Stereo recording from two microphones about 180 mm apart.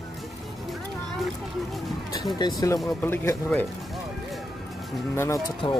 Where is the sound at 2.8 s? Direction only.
15° left (ahead or behind).